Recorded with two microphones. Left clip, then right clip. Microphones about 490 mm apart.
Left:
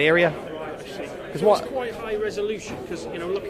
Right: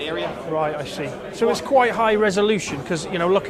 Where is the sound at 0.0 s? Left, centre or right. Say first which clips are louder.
Left 8 dB; left.